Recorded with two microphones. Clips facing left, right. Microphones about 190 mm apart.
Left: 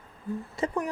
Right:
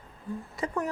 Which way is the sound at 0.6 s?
25° left (ahead or behind).